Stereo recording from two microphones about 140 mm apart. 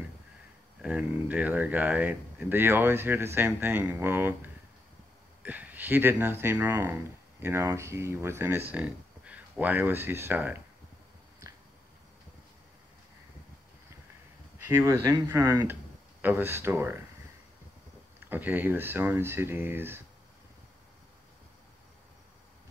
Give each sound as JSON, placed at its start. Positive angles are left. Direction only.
{"t": 0.8, "sound": "speech", "side_deg": -10}
{"t": 14.7, "sound": "speech", "side_deg": -20}
{"t": 18.3, "sound": "speech", "side_deg": -15}